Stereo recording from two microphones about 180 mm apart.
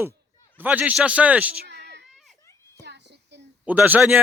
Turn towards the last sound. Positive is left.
turn(degrees=-10)  # may be behind; listen again after turning